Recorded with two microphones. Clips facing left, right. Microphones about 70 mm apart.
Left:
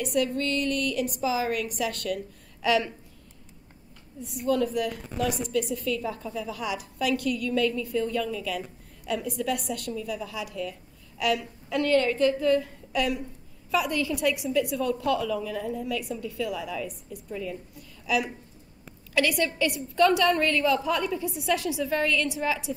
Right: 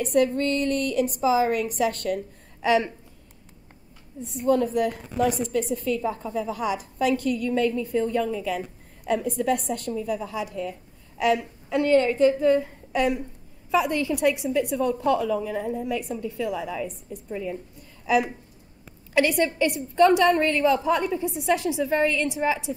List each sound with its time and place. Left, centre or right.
0.0 s a woman's voice: right
4.2 s a woman's voice: right